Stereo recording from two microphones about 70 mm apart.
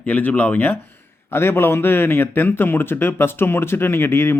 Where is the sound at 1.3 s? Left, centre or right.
Left.